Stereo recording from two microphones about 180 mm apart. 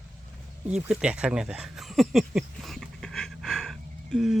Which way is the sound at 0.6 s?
5° right (ahead or behind).